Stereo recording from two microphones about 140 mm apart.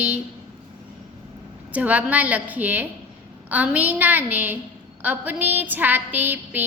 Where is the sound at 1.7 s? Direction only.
10° right (ahead or behind).